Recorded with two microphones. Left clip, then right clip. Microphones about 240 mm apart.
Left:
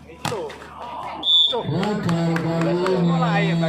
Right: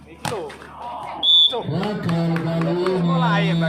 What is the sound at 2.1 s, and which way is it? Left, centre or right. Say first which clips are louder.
Music: left 1 dB; centre.